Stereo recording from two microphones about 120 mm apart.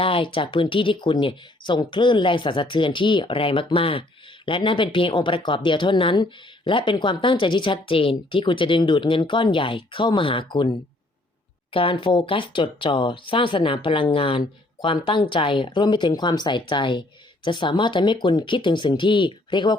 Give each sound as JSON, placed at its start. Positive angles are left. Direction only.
{"t": 0.0, "sound": "speech", "side_deg": 50}